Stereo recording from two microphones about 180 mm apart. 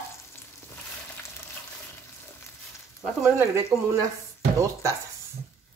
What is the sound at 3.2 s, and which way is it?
Speech, 10° right (ahead or behind).